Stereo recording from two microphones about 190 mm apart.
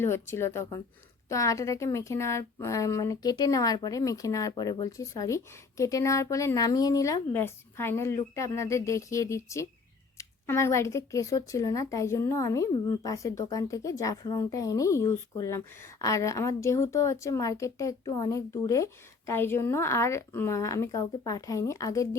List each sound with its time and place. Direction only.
0.0 s speech: 15° left (ahead or behind)